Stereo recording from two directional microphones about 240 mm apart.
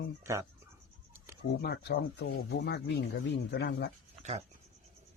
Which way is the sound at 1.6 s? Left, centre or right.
Left.